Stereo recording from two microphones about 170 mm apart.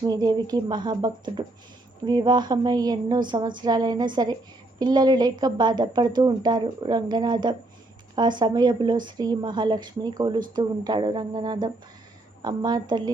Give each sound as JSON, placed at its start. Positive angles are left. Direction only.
{"t": 0.0, "sound": "a woman's voice", "side_deg": -20}